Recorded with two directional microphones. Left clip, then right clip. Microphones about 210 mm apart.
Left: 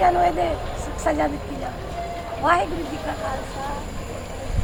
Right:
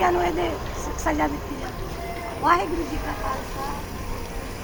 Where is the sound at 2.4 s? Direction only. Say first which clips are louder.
Left 1 dB; 5° left (ahead or behind).